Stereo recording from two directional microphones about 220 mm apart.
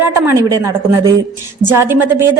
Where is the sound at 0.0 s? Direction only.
15° right (ahead or behind).